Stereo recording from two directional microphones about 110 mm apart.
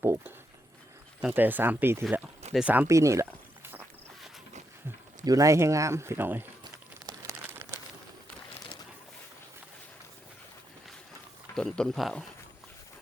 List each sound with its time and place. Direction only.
0.0 s speech: 20° right (ahead or behind)
2.4 s a sound: 80° right
2.8 s a sound: 30° right (ahead or behind)
5.2 s speech: 30° right (ahead or behind)
7.0 s crumpling: 40° right (ahead or behind)
7.5 s crumpling: 25° right (ahead or behind)
11.5 s speech: 5° left (ahead or behind)